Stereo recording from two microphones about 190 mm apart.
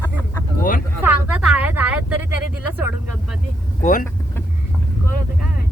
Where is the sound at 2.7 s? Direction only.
10° right (ahead or behind).